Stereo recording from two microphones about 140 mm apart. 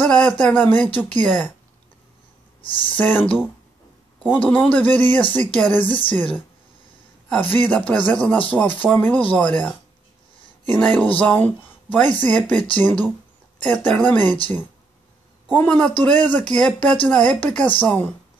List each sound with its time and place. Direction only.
0.0 s speech: 5° left (ahead or behind)
2.6 s speech: 35° left (ahead or behind)
3.0 s speech: 15° left (ahead or behind)
7.2 s speech: 10° left (ahead or behind)
15.5 s speech: 10° left (ahead or behind)